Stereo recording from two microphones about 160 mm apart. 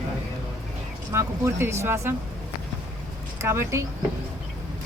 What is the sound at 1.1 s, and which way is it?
Speech, 15° right (ahead or behind).